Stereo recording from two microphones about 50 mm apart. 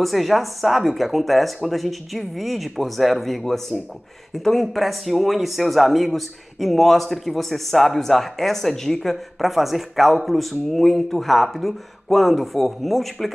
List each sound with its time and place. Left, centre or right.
0.0 s speech: centre